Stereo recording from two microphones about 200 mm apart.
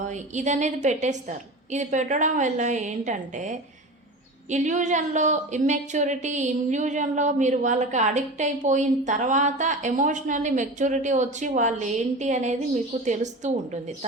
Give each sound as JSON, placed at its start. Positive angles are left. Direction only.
{"t": 0.0, "sound": "speech", "side_deg": -35}